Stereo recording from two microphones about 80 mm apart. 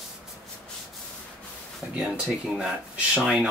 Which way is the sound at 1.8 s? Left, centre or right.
Right.